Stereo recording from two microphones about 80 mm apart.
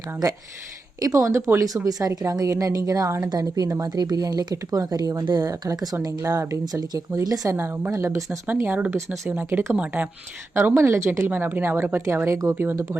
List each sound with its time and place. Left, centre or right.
1.0 s speech: right
4.5 s speech: right
6.1 s speech: right
7.5 s a woman's voice: right
8.4 s speech: right
9.0 s a woman's voice: right
9.7 s speech: centre
10.8 s a woman's voice: right
11.3 s speech: right